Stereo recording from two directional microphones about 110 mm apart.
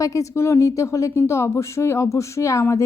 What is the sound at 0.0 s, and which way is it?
A woman's voice, 30° left (ahead or behind).